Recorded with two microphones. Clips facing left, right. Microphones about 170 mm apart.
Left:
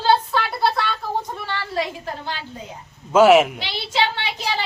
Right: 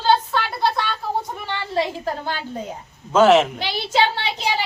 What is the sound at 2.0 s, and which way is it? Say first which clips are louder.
Speech: right 4 dB; 45° right (ahead or behind).